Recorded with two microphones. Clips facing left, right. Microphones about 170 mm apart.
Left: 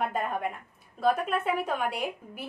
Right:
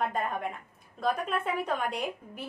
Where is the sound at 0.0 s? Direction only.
5° left (ahead or behind).